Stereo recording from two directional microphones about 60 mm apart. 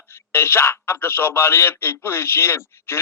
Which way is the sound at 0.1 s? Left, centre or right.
Left.